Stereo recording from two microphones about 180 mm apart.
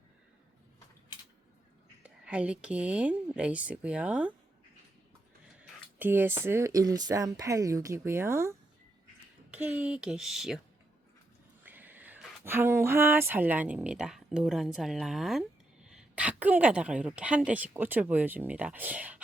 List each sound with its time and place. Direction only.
2.0 s speech: 5° right (ahead or behind)
6.0 s speech: 10° right (ahead or behind)
11.6 s a sound: 10° right (ahead or behind)
12.5 s speech: 15° right (ahead or behind)